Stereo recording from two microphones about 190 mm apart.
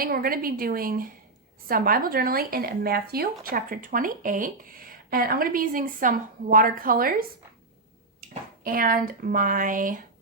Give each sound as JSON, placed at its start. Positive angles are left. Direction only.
{"t": 0.0, "sound": "speech", "side_deg": -50}
{"t": 8.6, "sound": "speech", "side_deg": -50}